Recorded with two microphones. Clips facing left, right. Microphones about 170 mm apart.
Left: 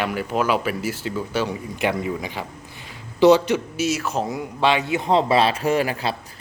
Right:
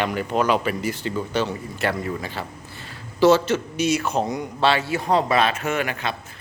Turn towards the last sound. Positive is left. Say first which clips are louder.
# left 4 dB
turn(degrees=30)  # may be behind; listen again after turning